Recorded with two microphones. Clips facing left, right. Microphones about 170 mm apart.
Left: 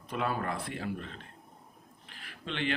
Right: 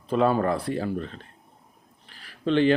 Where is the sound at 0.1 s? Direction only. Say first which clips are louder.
Right 11 dB; 30° right (ahead or behind).